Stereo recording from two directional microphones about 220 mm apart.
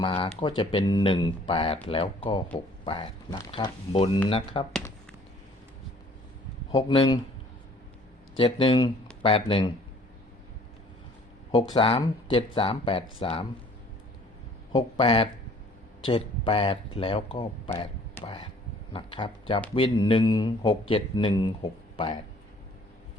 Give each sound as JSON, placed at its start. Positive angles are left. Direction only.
{"t": 0.0, "sound": "speech", "side_deg": 20}
{"t": 6.7, "sound": "speech", "side_deg": 25}
{"t": 8.4, "sound": "speech", "side_deg": 25}
{"t": 11.5, "sound": "speech", "side_deg": 25}
{"t": 14.7, "sound": "speech", "side_deg": 25}
{"t": 17.7, "sound": "a sound", "side_deg": 10}
{"t": 18.2, "sound": "speech", "side_deg": 25}